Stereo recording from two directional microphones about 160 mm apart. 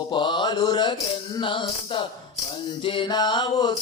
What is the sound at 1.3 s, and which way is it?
Music, 30° left (ahead or behind).